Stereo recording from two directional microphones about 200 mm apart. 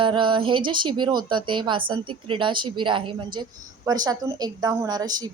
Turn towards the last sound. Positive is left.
turn(degrees=-20)  # may be behind; listen again after turning